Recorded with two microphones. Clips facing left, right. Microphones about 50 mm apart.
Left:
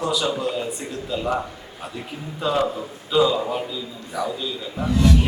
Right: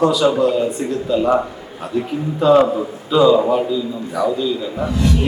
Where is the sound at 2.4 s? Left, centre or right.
Centre.